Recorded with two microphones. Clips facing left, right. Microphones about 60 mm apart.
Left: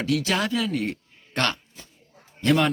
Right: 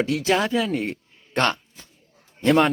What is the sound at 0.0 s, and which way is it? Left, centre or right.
A man's voice, right.